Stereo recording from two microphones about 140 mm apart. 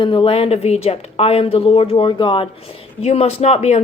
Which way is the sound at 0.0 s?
35° left (ahead or behind).